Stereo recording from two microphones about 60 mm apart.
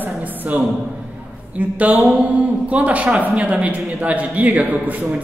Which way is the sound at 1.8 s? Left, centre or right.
Right.